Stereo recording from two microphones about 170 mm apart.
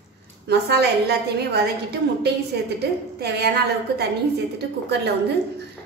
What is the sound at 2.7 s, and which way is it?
Speech, 75° right (ahead or behind).